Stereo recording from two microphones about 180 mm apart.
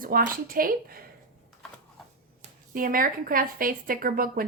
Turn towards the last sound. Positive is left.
turn(degrees=-50)  # may be behind; listen again after turning